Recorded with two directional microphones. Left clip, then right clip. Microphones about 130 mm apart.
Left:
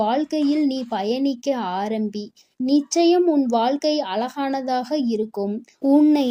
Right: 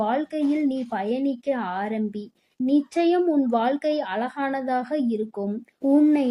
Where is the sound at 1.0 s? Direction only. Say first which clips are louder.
Left 4 dB; 40° left (ahead or behind); by 5.0 s 25° left (ahead or behind).